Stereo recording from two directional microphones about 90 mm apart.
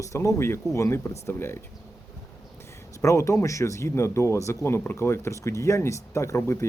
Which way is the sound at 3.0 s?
35° left (ahead or behind).